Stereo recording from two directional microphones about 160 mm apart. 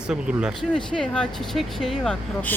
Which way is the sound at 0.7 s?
5° left (ahead or behind).